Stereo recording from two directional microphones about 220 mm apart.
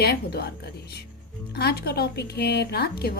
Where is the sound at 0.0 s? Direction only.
45° left (ahead or behind).